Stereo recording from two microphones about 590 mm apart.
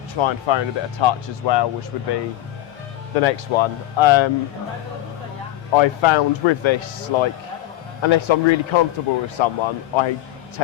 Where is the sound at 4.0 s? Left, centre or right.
Left.